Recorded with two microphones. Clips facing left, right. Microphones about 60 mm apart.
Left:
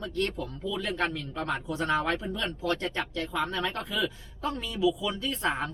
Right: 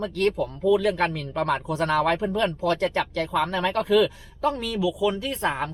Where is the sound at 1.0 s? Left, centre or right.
Right.